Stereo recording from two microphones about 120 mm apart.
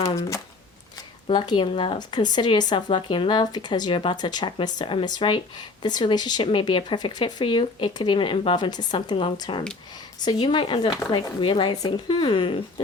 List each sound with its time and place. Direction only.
0.2 s speech: 25° left (ahead or behind)
1.3 s speech: 40° left (ahead or behind)
2.0 s speech: 40° left (ahead or behind)